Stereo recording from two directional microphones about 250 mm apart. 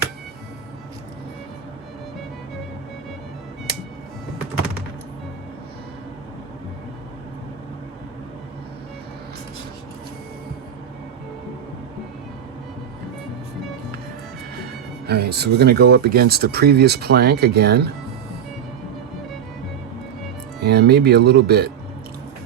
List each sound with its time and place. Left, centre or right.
15.0 s speech: right
20.6 s speech: right